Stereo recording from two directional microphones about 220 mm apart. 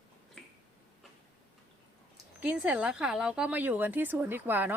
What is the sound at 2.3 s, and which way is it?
Speech, 5° right (ahead or behind).